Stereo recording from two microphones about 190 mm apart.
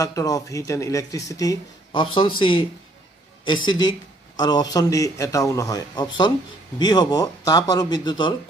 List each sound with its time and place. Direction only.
0.0 s speech: 15° left (ahead or behind)